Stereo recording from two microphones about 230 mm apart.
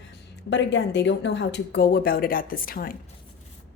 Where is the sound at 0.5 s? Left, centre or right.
Left.